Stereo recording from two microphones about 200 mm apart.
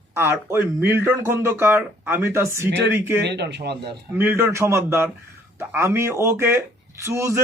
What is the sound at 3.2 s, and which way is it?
Speech, 55° right (ahead or behind).